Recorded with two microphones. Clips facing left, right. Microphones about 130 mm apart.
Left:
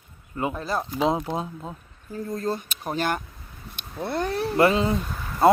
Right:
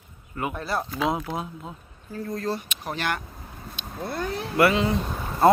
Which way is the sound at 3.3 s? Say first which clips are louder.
Right 5 dB; 45° right (ahead or behind).